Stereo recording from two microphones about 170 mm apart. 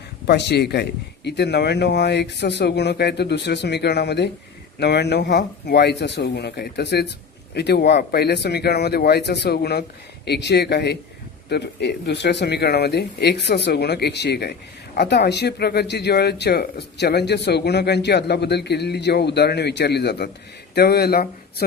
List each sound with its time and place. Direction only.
0.3 s speech: 75° left (ahead or behind)